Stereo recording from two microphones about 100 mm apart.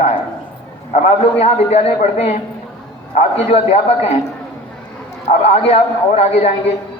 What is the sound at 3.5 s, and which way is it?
Speech, 90° left.